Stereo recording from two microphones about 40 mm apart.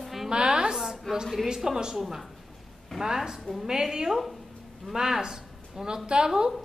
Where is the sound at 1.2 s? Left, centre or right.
Centre.